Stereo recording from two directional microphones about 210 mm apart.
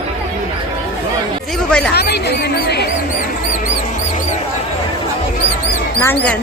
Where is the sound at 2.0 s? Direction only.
50° left (ahead or behind).